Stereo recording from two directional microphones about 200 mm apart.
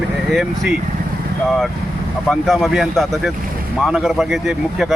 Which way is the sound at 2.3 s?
Centre (ahead or behind).